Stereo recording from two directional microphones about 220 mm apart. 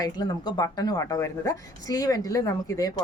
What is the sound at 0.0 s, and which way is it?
A woman's voice, 20° left (ahead or behind).